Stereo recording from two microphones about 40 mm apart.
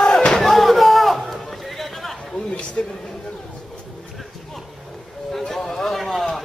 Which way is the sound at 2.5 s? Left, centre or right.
Left.